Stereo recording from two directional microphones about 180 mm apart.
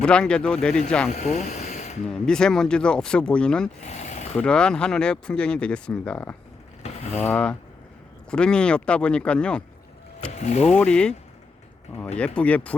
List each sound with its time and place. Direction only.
0.0 s speech: 5° left (ahead or behind)
1.1 s speech: 40° left (ahead or behind)
2.0 s speech: 5° left (ahead or behind)
3.8 s a sound: 40° left (ahead or behind)
4.4 s speech: 5° left (ahead or behind)
6.8 s speech: 35° left (ahead or behind)
7.3 s speech: 10° left (ahead or behind)
10.3 s speech: 40° left (ahead or behind)
10.8 s speech: 5° left (ahead or behind)
12.1 s speech: 5° left (ahead or behind)